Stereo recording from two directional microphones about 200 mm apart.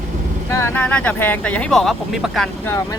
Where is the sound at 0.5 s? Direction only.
10° left (ahead or behind).